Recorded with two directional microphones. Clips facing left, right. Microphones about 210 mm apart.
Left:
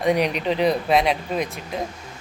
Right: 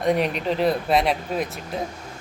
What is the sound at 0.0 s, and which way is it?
Speech, centre (ahead or behind).